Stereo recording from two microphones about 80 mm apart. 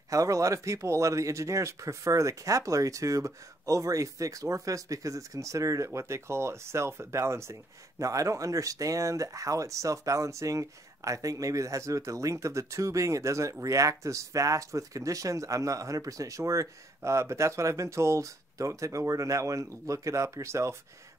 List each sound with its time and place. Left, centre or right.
0.1 s speech: right